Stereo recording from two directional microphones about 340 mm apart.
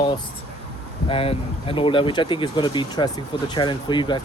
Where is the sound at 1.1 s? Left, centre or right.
Centre.